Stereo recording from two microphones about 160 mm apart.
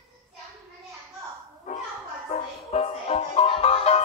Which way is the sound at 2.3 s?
40° left (ahead or behind).